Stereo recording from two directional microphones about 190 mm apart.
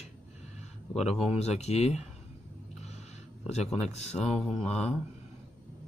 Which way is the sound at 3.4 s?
35° left (ahead or behind).